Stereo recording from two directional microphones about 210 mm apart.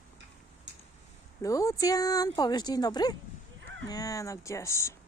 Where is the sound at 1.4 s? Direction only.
15° left (ahead or behind).